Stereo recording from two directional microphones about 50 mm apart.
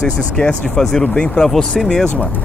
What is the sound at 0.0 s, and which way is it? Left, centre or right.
Speech, centre.